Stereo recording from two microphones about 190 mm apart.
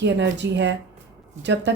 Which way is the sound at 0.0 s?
65° right (ahead or behind).